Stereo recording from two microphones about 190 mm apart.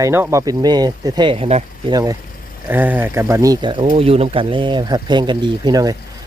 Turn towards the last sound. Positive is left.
turn(degrees=-20)  # may be behind; listen again after turning